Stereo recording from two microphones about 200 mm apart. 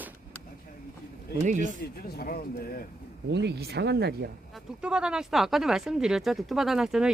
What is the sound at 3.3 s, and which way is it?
Speech, 60° right (ahead or behind).